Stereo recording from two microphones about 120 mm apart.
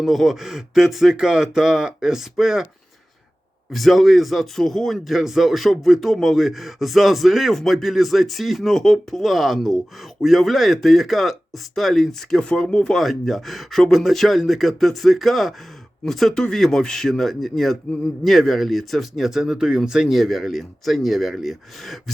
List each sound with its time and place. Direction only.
0.0 s speech: centre (ahead or behind)
3.7 s speech: centre (ahead or behind)